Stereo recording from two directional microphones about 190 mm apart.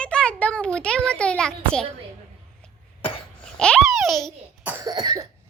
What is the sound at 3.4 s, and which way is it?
Babbling, 5° left (ahead or behind).